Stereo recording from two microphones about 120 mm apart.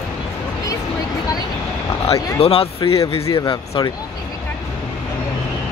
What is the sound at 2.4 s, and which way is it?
Speech, 55° left (ahead or behind).